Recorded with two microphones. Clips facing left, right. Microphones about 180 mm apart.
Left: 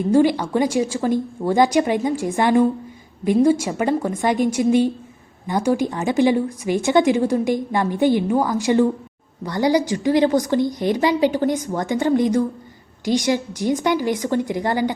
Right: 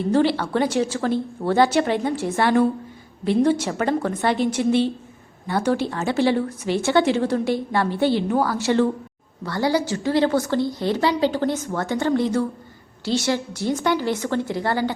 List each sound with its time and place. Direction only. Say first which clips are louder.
0.1 s a woman's voice: left 3 dB; 15° left (ahead or behind)